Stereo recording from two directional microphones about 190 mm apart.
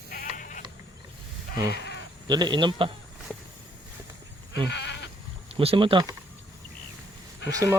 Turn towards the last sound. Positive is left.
turn(degrees=-15)  # may be behind; listen again after turning